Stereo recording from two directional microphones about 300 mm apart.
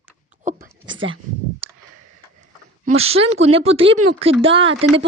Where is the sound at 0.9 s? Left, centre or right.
Right.